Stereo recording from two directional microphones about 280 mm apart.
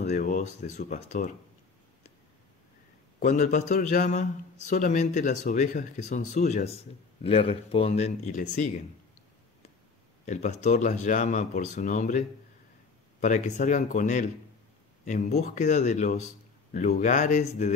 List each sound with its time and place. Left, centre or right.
0.0 s speech: left
3.2 s speech: left
10.2 s speech: left